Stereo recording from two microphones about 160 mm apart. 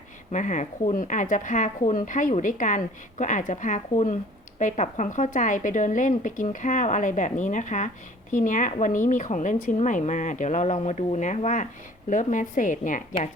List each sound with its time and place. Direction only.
0.3 s speech: 50° left (ahead or behind)